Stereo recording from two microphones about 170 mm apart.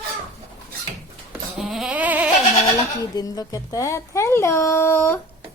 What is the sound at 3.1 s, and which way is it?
A woman's voice, 20° left (ahead or behind).